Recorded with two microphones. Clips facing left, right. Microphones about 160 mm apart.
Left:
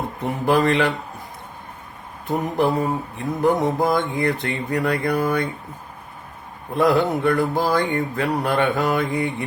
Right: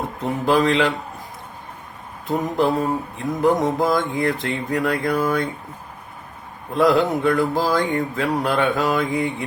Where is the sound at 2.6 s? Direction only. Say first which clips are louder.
Right 1 dB; centre (ahead or behind).